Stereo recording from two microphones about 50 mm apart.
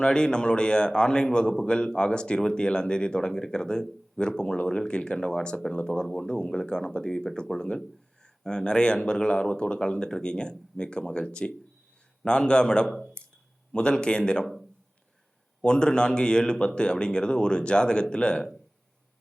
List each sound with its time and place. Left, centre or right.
0.0 s a man's voice: centre
13.2 s a sound: centre
13.7 s a man's voice: centre
15.6 s a man's voice: centre